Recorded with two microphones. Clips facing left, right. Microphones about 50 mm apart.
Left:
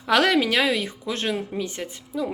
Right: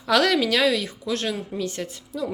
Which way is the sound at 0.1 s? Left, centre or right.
Left.